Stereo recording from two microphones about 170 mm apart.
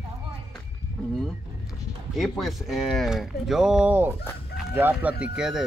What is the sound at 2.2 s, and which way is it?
Speech, centre (ahead or behind).